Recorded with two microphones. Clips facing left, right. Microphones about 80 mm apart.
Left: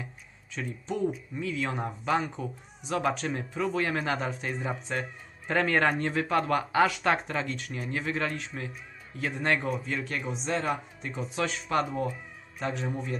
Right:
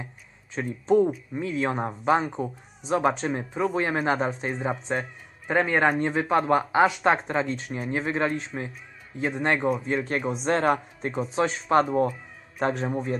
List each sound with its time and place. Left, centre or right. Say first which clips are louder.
0.6 s a man's voice: right 10 dB; right